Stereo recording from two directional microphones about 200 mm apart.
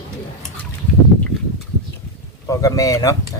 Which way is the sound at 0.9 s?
5° left (ahead or behind).